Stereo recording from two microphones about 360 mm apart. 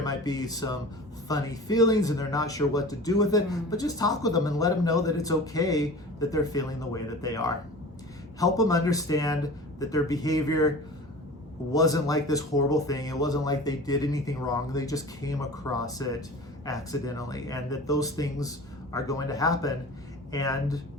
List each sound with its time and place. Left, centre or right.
0.0 s speech: centre
11.7 s speech: centre